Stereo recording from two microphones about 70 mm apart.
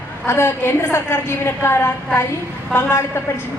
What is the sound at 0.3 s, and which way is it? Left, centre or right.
A woman's voice, left.